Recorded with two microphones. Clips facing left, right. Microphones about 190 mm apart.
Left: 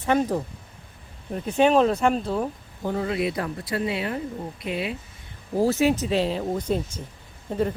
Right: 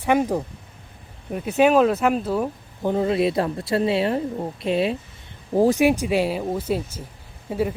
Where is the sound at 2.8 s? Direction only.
20° right (ahead or behind).